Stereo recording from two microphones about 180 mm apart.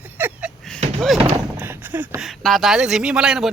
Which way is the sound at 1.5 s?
10° right (ahead or behind).